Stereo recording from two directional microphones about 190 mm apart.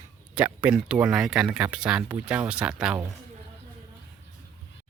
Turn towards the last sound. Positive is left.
turn(degrees=-5)  # may be behind; listen again after turning